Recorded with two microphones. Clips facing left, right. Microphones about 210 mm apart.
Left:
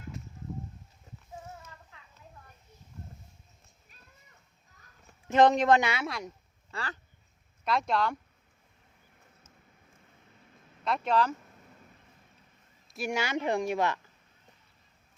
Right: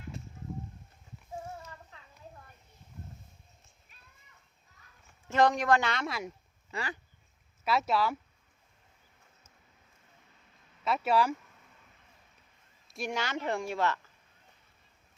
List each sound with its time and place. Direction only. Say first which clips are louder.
0.1 s a sound: left 1 dB; 30° right (ahead or behind)
5.3 s a woman's voice: left 4 dB; 20° left (ahead or behind)
5.9 s speech: left 1 dB; centre (ahead or behind)
6.7 s speech: right 2 dB; 15° right (ahead or behind)
10.8 s speech: even; 5° right (ahead or behind)
13.1 s speech: left 3 dB; 10° left (ahead or behind)